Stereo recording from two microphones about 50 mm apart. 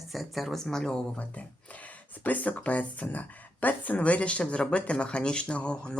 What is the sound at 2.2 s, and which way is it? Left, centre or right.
Speech, left.